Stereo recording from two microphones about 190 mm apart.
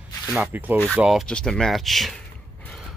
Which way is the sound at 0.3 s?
10° right (ahead or behind).